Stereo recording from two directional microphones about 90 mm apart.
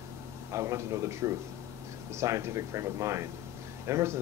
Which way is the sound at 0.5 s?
35° right (ahead or behind).